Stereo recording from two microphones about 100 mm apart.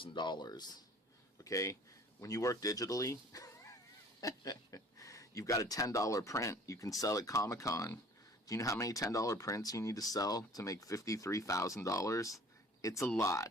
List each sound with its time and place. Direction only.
0.0 s speech: 50° left (ahead or behind); by 13.5 s 30° left (ahead or behind)